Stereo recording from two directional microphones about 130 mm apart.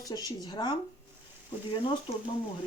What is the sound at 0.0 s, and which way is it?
Speech, 30° left (ahead or behind).